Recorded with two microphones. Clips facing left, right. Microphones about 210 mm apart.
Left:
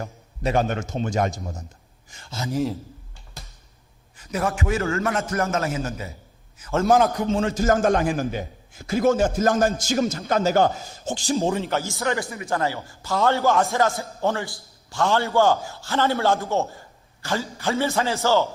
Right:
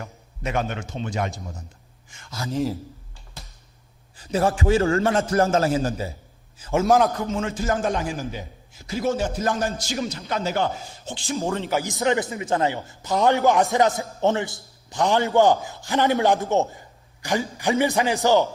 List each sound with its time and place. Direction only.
0.0 s a man's voice: 35° left (ahead or behind)
2.5 s a man's voice: centre (ahead or behind)
4.2 s a man's voice: 30° right (ahead or behind)
6.8 s a man's voice: centre (ahead or behind)
7.3 s a man's voice: 35° left (ahead or behind)
11.7 s a man's voice: 15° right (ahead or behind)